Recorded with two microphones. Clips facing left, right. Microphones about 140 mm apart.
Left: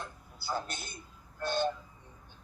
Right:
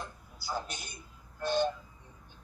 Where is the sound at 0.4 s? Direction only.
15° right (ahead or behind).